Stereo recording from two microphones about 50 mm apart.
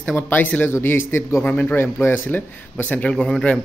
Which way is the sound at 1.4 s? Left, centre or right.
Left.